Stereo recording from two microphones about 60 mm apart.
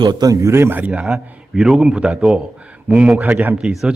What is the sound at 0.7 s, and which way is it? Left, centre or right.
A man's voice, right.